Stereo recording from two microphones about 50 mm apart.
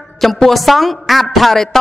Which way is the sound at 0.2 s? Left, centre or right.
Centre.